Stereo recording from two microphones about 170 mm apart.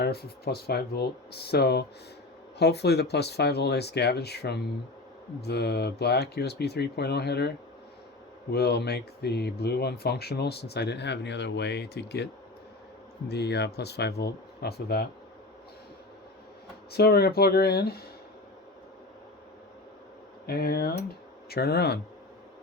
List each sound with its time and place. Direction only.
0.0 s speech: 70° left (ahead or behind)
16.9 s speech: 65° left (ahead or behind)
20.5 s speech: 65° left (ahead or behind)